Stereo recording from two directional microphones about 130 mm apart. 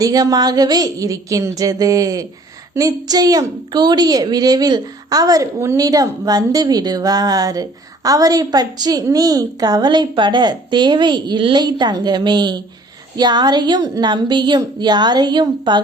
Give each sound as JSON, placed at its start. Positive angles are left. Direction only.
{"t": 0.0, "sound": "a woman's voice", "side_deg": -30}